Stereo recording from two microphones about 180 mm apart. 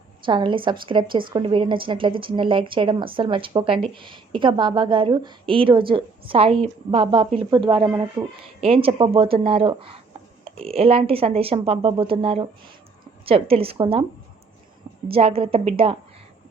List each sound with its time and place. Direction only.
0.3 s speech: 25° right (ahead or behind)
15.1 s speech: 35° right (ahead or behind)